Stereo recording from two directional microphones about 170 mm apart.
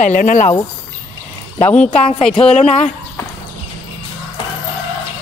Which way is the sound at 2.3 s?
40° left (ahead or behind).